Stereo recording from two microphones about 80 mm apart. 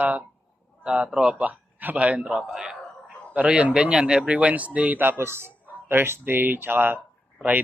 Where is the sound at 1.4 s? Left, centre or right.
Right.